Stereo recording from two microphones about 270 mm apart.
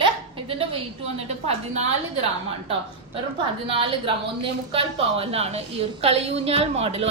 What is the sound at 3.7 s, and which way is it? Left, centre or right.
A woman's voice, centre.